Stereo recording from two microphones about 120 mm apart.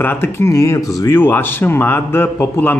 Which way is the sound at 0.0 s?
20° left (ahead or behind).